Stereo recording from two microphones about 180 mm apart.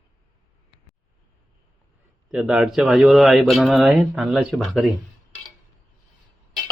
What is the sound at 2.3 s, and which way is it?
Speech, 5° right (ahead or behind).